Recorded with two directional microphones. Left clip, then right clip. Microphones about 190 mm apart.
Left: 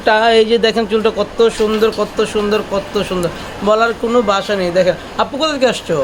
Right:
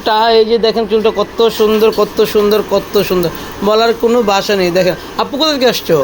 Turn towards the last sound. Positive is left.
turn(degrees=-15)  # may be behind; listen again after turning